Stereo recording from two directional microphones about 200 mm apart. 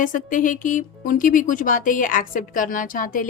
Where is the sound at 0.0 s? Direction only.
40° left (ahead or behind).